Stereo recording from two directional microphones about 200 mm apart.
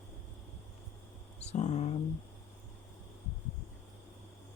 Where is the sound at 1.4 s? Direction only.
35° left (ahead or behind).